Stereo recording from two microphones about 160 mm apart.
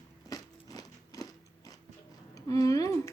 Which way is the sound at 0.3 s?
25° left (ahead or behind).